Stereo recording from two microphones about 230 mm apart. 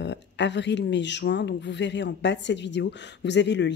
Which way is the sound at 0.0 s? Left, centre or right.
Left.